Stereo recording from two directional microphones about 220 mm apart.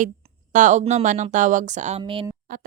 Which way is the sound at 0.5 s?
35° right (ahead or behind).